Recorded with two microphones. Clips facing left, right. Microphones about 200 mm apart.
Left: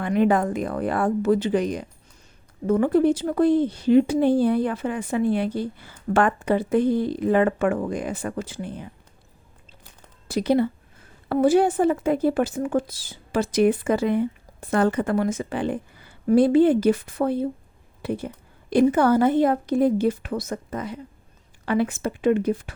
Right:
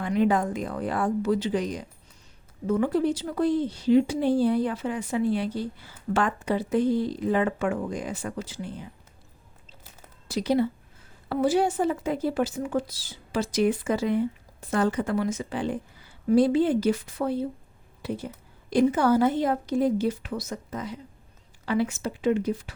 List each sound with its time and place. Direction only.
0.0 s speech: 55° left (ahead or behind)
10.2 s speech: 55° left (ahead or behind)